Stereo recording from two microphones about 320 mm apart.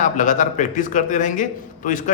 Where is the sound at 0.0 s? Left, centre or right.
Left.